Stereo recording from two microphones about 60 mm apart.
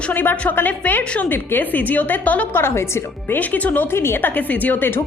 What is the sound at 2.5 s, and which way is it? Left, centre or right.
Speech, left.